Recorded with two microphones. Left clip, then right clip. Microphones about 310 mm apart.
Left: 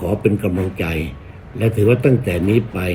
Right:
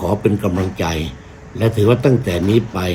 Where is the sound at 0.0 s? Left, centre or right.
Centre.